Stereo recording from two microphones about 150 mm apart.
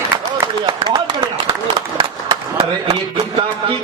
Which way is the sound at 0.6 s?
30° right (ahead or behind).